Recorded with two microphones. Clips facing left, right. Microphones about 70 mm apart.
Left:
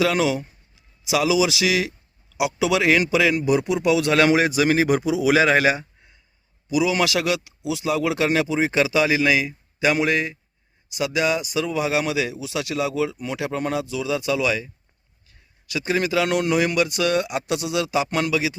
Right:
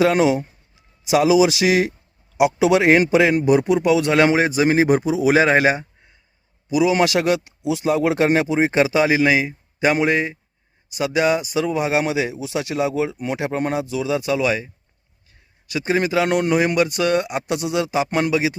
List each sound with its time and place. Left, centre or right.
0.0 s a man's voice: right
15.7 s a man's voice: right